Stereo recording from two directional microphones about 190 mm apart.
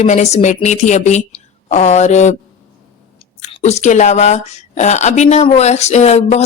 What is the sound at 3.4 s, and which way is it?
Speech, 35° left (ahead or behind).